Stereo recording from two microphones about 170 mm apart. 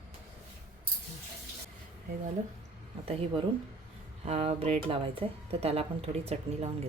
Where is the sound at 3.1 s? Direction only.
35° right (ahead or behind).